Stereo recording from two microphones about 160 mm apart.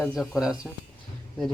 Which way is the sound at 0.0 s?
Centre (ahead or behind).